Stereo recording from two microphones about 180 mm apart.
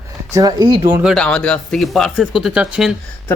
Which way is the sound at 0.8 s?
10° right (ahead or behind).